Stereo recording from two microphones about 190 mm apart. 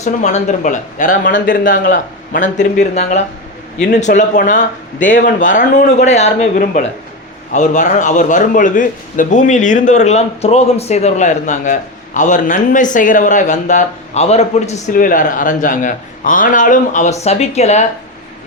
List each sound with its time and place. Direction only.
0.0 s a man's voice: 35° left (ahead or behind)
14.9 s a man's voice: 45° left (ahead or behind)